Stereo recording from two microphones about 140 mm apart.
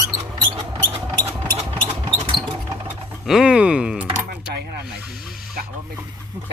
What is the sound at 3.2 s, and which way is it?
Speech, 5° right (ahead or behind).